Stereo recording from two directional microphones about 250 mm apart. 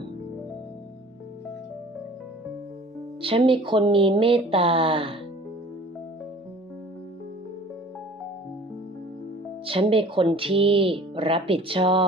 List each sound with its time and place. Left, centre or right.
3.2 s speech: right
9.7 s speech: right